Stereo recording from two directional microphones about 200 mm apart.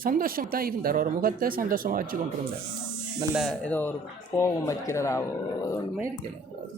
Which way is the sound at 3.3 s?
5° left (ahead or behind).